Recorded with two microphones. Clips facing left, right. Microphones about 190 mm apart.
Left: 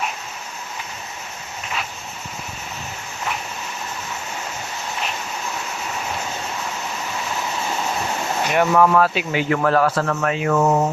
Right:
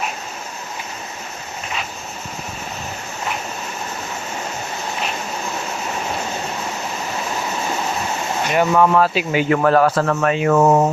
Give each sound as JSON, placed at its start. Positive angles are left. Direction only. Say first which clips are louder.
{"t": 8.5, "sound": "speech", "louder": "right 1 dB", "side_deg": 0}
{"t": 9.3, "sound": "speech", "louder": "right 3 dB", "side_deg": -15}
{"t": 9.6, "sound": "speech", "louder": "right 3 dB", "side_deg": -30}